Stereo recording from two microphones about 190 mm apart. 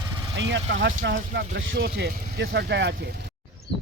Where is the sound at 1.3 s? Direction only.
45° right (ahead or behind).